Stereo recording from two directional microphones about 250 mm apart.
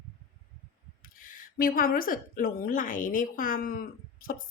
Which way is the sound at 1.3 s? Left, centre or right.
Left.